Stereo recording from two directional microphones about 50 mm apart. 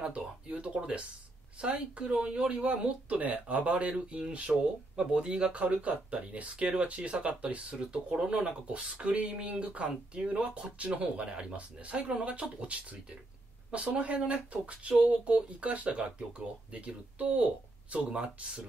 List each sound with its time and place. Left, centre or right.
0.0 s speech: right